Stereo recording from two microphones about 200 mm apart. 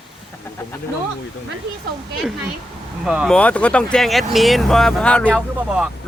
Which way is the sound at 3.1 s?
5° right (ahead or behind).